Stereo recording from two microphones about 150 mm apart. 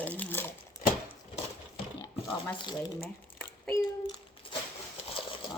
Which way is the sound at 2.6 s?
30° left (ahead or behind).